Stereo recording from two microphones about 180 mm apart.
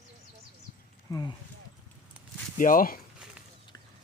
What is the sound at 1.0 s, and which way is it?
Speech, 20° left (ahead or behind).